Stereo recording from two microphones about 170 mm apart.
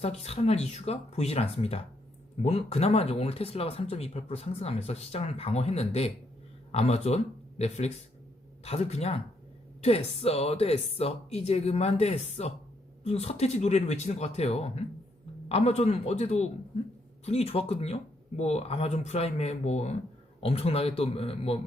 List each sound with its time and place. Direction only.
0.0 s speech: 35° left (ahead or behind)